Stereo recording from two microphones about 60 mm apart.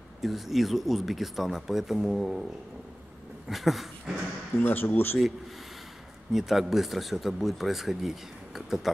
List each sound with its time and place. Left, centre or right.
0.2 s speech: centre
3.4 s a sound: centre
4.6 s speech: left
6.3 s speech: centre